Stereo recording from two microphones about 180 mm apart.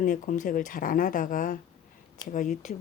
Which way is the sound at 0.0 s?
50° left (ahead or behind).